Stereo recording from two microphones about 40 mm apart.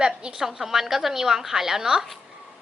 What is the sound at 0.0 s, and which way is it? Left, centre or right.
Speech, right.